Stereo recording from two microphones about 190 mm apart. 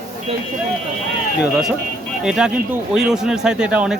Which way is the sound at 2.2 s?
5° right (ahead or behind).